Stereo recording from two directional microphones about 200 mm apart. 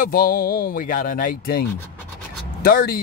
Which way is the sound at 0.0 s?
45° left (ahead or behind).